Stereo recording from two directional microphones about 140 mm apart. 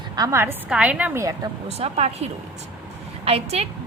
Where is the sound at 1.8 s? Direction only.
50° right (ahead or behind).